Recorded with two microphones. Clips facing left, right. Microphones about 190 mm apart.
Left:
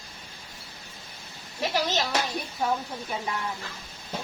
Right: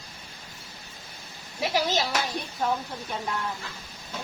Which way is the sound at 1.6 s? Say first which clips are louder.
Right 1 dB; 10° right (ahead or behind).